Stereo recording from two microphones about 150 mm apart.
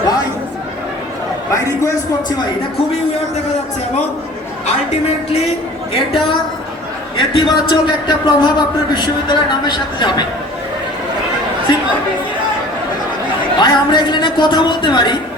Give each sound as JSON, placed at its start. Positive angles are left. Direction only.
{"t": 1.5, "sound": "a man's voice", "side_deg": 20}
{"t": 4.6, "sound": "speech", "side_deg": 45}
{"t": 5.9, "sound": "a man's voice", "side_deg": 35}
{"t": 11.7, "sound": "a man's voice", "side_deg": 30}
{"t": 13.6, "sound": "a man's voice", "side_deg": 30}